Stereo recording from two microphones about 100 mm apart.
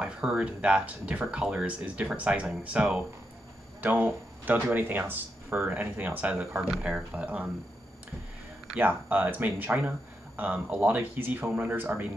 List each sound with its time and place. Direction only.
0.0 s speech: 10° right (ahead or behind)
8.7 s speech: 15° right (ahead or behind)